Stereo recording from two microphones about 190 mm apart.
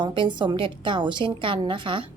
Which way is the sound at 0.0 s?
25° right (ahead or behind).